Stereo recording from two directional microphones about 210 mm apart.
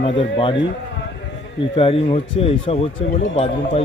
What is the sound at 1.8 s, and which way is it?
Speech, 25° left (ahead or behind).